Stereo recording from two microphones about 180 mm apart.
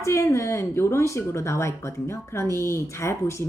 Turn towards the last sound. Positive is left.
turn(degrees=15)  # may be behind; listen again after turning